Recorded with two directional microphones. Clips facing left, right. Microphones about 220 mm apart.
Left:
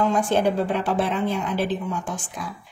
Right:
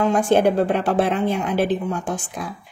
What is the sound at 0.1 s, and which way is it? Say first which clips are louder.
A woman's voice: right 4 dB; 60° right (ahead or behind).